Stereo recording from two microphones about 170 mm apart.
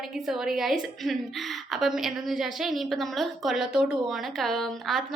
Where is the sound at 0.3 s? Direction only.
Centre (ahead or behind).